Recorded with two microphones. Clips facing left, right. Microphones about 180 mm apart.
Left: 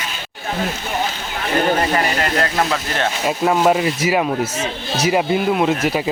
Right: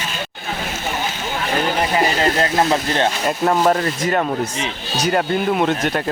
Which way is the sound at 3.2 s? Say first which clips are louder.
Left 3 dB; 5° left (ahead or behind).